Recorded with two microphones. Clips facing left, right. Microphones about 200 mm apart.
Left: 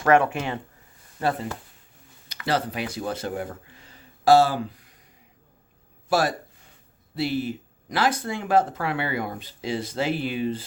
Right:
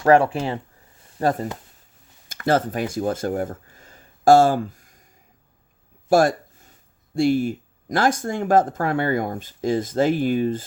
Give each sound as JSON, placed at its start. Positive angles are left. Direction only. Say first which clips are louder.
{"t": 0.0, "sound": "speech", "louder": "right 4 dB", "side_deg": -30}
{"t": 1.2, "sound": "speech", "louder": "right 4 dB", "side_deg": -40}
{"t": 6.1, "sound": "a sound", "louder": "right 6 dB", "side_deg": -45}
{"t": 7.2, "sound": "speech", "louder": "right 7 dB", "side_deg": -50}